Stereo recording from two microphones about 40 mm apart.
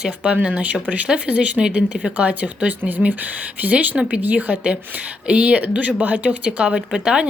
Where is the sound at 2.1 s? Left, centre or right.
Right.